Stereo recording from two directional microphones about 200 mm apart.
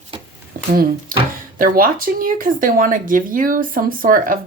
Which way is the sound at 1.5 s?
45° right (ahead or behind).